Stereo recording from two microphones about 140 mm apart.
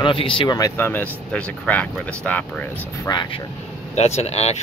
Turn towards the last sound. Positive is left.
turn(degrees=50)  # may be behind; listen again after turning